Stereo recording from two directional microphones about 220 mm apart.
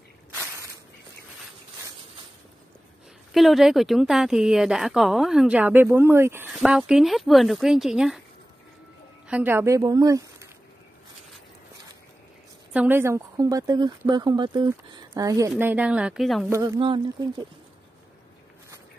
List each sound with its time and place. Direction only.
0.3 s a sound: 10° right (ahead or behind)
3.3 s a woman's voice: centre (ahead or behind)
9.3 s a woman's voice: 10° right (ahead or behind)
12.7 s a woman's voice: 10° right (ahead or behind)
16.4 s a woman's voice: 15° right (ahead or behind)